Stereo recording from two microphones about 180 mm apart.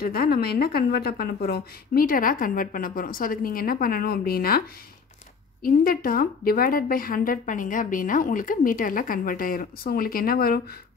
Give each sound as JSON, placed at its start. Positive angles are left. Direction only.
{"t": 0.0, "sound": "a woman's voice", "side_deg": 55}